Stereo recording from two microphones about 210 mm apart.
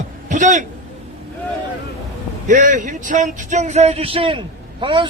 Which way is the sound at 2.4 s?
35° right (ahead or behind).